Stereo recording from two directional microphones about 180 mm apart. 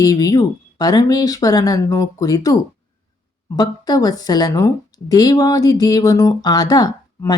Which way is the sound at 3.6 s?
20° left (ahead or behind).